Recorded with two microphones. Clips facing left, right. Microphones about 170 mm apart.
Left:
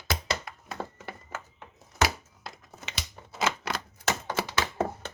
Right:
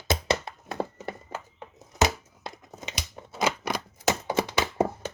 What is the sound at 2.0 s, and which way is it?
Scissors, 20° right (ahead or behind).